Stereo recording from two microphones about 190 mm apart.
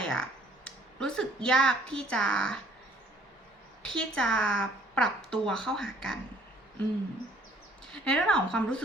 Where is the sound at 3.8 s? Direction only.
5° left (ahead or behind).